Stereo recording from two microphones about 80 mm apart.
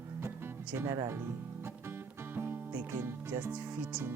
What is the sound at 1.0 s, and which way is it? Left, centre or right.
Music, right.